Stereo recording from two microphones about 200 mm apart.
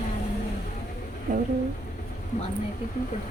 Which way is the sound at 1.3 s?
40° right (ahead or behind).